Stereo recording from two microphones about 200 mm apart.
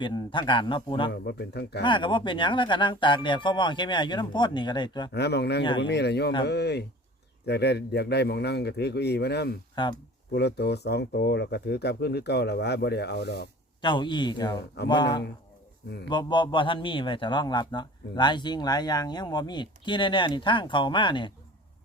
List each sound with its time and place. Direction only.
0.0 s a man's voice: 25° left (ahead or behind)
1.1 s speech: 55° left (ahead or behind)
1.8 s a man's voice: 25° left (ahead or behind)
5.1 s speech: 55° left (ahead or behind)
9.8 s a man's voice: 25° left (ahead or behind)
10.3 s speech: 55° left (ahead or behind)
13.8 s a man's voice: 25° left (ahead or behind)